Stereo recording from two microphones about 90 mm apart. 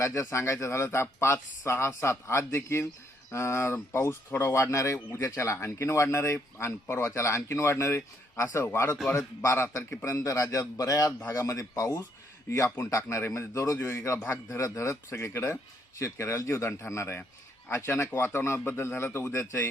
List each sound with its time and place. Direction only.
0.0 s speech: 30° left (ahead or behind)
4.5 s speech: 35° left (ahead or behind)